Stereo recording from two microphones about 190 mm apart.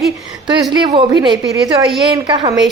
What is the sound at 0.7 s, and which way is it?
A woman's voice, 25° right (ahead or behind).